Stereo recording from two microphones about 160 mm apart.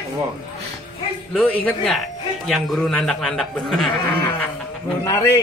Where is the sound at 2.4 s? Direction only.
Centre (ahead or behind).